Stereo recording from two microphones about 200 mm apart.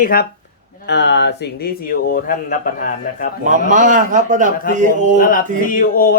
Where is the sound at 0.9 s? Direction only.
60° left (ahead or behind); by 3.3 s 45° left (ahead or behind).